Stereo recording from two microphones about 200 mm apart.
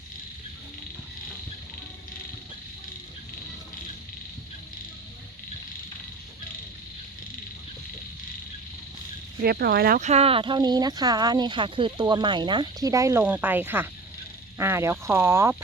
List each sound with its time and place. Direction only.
9.4 s speech: 50° right (ahead or behind)
10.0 s speech: 30° right (ahead or behind); by 15.5 s 15° right (ahead or behind)